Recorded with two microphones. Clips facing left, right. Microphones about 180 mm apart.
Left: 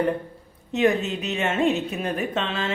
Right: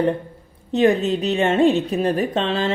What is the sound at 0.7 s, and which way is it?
A woman's voice, 35° right (ahead or behind).